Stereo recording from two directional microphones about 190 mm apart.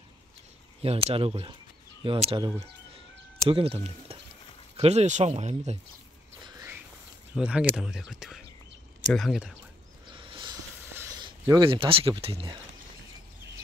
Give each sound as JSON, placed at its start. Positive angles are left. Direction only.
{"t": 0.8, "sound": "speech", "side_deg": -30}
{"t": 7.3, "sound": "speech", "side_deg": -5}
{"t": 10.0, "sound": "a sound", "side_deg": -25}
{"t": 11.1, "sound": "speech", "side_deg": -20}